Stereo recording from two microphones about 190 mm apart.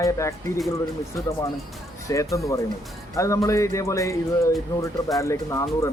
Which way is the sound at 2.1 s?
15° left (ahead or behind).